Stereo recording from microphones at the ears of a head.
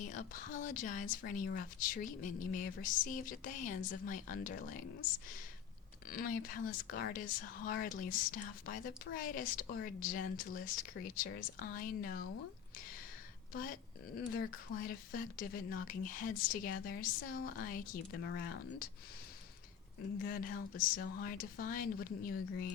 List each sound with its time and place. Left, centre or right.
0.0 s speech: left
13.5 s speech: left
20.0 s speech: left